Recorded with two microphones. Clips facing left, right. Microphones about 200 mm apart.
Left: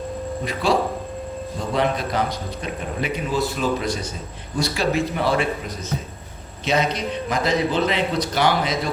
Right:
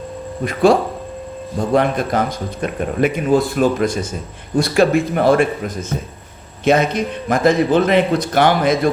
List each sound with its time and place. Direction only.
0.4 s a man's voice: 50° right (ahead or behind)